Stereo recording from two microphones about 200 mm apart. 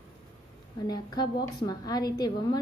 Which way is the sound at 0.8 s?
20° left (ahead or behind).